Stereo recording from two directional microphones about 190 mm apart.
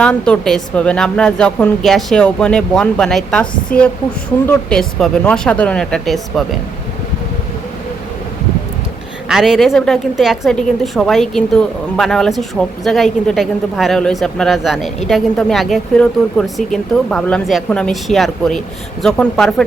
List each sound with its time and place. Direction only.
0.0 s a woman's voice: 5° left (ahead or behind)
4.4 s a woman's voice: 5° left (ahead or behind)
9.3 s a woman's voice: centre (ahead or behind)